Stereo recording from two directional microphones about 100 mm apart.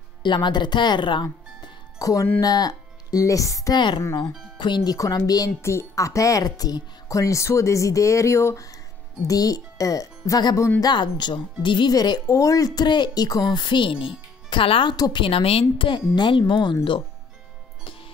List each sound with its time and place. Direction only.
0.2 s speech: 50° left (ahead or behind)
4.6 s speech: 50° left (ahead or behind)
10.8 s speech: 45° left (ahead or behind)
15.0 s speech: 40° left (ahead or behind)
15.2 s a woman's voice: 70° left (ahead or behind); by 16.7 s 50° left (ahead or behind)